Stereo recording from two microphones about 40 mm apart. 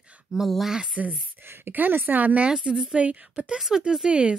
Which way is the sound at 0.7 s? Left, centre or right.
Right.